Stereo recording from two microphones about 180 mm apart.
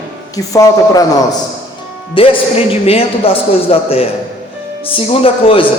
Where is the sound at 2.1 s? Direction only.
30° left (ahead or behind).